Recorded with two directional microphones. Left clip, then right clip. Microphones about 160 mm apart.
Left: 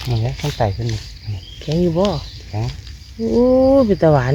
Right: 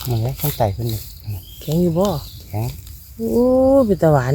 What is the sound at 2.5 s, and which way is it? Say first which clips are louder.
Speech: even; 45° right (ahead or behind).